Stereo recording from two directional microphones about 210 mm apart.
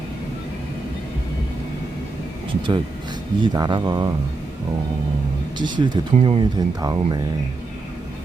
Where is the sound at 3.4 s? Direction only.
20° right (ahead or behind).